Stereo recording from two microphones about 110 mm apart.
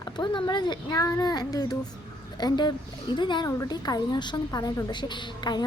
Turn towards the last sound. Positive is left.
turn(degrees=40)  # may be behind; listen again after turning